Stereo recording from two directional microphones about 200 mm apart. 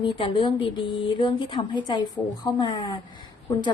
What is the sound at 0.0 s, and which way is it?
Speech, 25° left (ahead or behind).